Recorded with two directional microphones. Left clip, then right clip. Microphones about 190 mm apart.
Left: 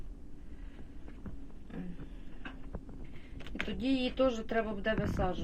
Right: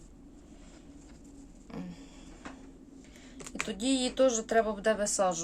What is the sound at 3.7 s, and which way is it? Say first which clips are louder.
A woman's voice: right 3 dB; 10° right (ahead or behind).